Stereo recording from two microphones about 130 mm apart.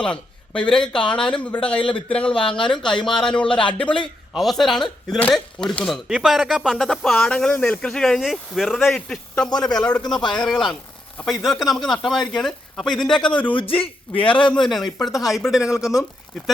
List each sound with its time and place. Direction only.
0.0 s speech: 10° left (ahead or behind)
2.3 s a man's voice: 40° left (ahead or behind)
2.6 s speech: 5° left (ahead or behind)
13.6 s a man's voice: 45° left (ahead or behind)
14.5 s speech: centre (ahead or behind)